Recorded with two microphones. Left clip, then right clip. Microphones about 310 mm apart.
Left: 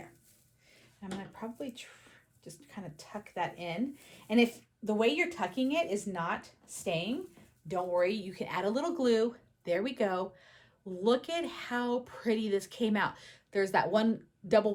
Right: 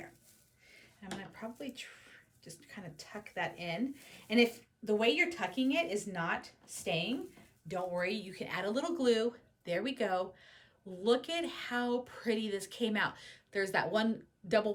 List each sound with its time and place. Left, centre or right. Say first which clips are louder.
0.7 s speech: left 2 dB; centre